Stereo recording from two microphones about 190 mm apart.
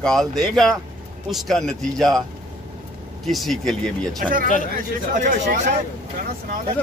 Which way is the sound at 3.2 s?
Centre (ahead or behind).